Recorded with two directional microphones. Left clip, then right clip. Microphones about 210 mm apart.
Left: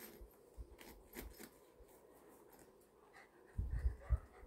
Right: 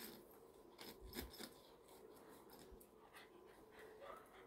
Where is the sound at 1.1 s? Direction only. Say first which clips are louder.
Right 1 dB; centre (ahead or behind).